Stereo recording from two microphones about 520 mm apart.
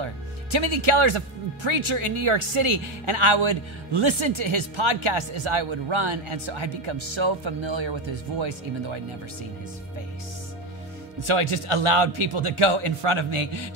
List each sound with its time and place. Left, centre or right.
0.0 s speech: right
11.1 s a man's voice: right